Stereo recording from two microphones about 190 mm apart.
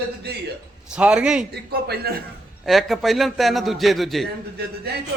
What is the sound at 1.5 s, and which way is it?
Speech, 55° right (ahead or behind).